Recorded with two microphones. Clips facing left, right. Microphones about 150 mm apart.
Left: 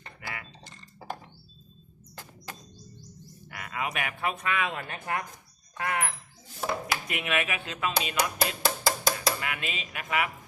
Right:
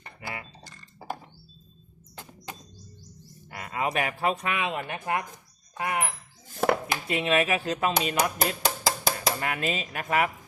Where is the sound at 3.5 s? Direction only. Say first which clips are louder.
Right 5 dB; 30° right (ahead or behind).